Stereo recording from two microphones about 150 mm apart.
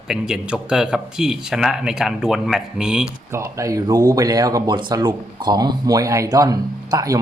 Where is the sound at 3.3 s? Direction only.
20° right (ahead or behind).